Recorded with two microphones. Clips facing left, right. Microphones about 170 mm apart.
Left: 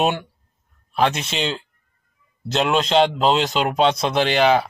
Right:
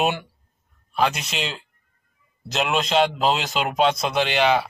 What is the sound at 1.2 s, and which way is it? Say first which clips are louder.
Speech: left 5 dB; centre (ahead or behind).